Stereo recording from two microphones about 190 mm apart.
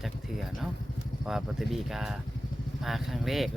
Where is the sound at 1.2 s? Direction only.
Centre (ahead or behind).